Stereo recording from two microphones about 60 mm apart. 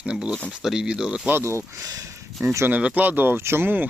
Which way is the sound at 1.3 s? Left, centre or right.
Right.